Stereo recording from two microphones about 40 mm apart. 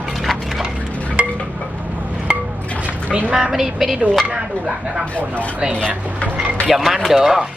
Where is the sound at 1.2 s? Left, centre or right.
Right.